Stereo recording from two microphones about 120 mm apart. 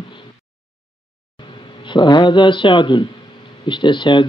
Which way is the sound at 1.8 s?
40° left (ahead or behind).